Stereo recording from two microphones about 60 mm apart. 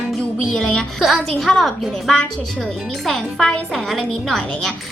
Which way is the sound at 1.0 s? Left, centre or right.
Centre.